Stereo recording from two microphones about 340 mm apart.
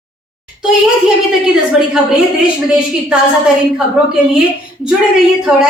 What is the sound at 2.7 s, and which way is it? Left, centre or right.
Speech, centre.